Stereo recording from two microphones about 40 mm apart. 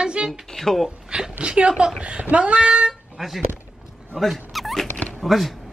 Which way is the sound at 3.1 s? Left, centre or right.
Centre.